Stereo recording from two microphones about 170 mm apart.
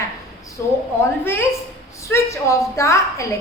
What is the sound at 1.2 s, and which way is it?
A woman's voice, 15° left (ahead or behind).